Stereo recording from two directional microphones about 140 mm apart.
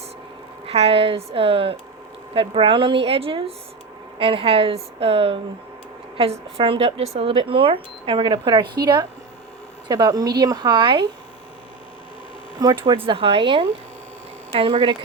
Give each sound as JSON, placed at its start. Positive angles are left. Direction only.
{"t": 0.6, "sound": "speech", "side_deg": -45}
{"t": 6.6, "sound": "speech", "side_deg": -40}
{"t": 12.5, "sound": "speech", "side_deg": -35}